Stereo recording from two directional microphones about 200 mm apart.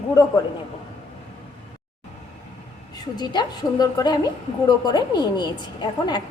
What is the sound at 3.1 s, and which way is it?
A woman's voice, 20° left (ahead or behind).